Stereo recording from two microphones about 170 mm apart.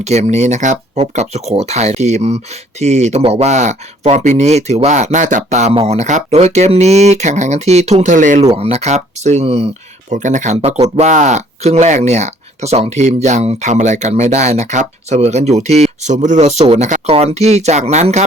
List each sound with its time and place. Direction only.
0.0 s speech: 40° right (ahead or behind)
8.5 s speech: 35° right (ahead or behind)